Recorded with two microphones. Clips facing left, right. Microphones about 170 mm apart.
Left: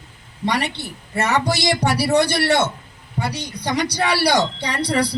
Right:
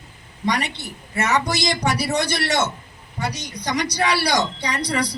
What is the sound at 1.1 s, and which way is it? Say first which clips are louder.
Speech: left 2 dB; 30° left (ahead or behind).